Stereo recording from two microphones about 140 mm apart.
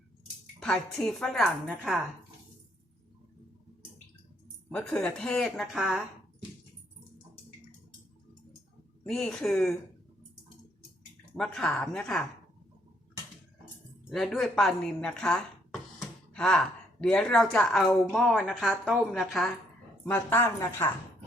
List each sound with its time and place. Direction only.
0.6 s a woman's voice: 5° left (ahead or behind)
4.7 s a woman's voice: 5° left (ahead or behind)
9.0 s a woman's voice: 5° left (ahead or behind)
11.3 s a woman's voice: 5° left (ahead or behind)
14.1 s a woman's voice: centre (ahead or behind)
20.1 s a woman's voice: 15° left (ahead or behind)